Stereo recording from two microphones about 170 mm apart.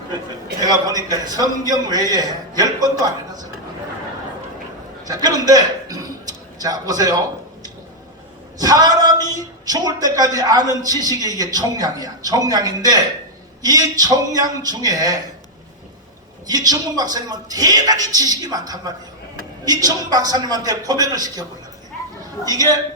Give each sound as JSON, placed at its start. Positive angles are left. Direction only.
{"t": 0.6, "sound": "a man's voice", "side_deg": -20}
{"t": 5.0, "sound": "a man's voice", "side_deg": -20}
{"t": 8.5, "sound": "a man's voice", "side_deg": -25}
{"t": 16.5, "sound": "a man's voice", "side_deg": -20}
{"t": 22.4, "sound": "a man's voice", "side_deg": -20}